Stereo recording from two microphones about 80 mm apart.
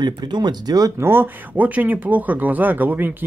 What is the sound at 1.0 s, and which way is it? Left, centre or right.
Speech, right.